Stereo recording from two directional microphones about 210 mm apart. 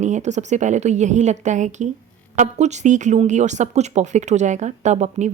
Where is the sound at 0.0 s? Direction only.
35° right (ahead or behind).